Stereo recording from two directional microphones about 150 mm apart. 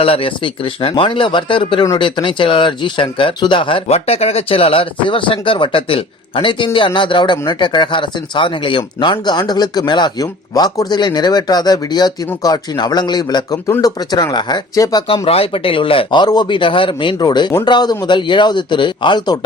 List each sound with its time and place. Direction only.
0.0 s a man's voice: 35° left (ahead or behind)
15.0 s a man's voice: 40° left (ahead or behind)